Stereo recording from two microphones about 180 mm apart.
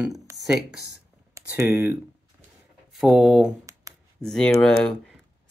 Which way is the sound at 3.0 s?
Centre (ahead or behind).